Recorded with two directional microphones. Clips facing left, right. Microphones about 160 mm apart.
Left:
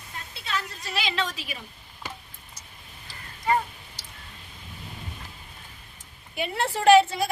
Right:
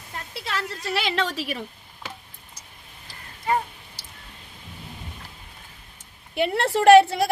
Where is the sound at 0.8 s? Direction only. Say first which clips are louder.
Right 6 dB; 65° right (ahead or behind).